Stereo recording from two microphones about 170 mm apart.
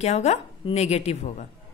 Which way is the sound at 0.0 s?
40° left (ahead or behind).